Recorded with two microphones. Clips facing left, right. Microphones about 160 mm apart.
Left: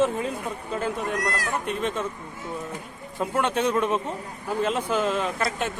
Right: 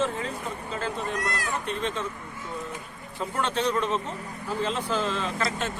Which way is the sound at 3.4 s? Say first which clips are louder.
Left 3 dB; 10° left (ahead or behind).